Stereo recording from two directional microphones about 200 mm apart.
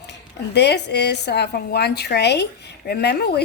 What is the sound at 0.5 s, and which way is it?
A woman's voice, 55° left (ahead or behind).